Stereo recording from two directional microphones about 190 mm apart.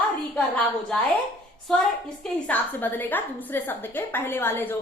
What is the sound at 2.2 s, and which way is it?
A woman's voice, 10° left (ahead or behind).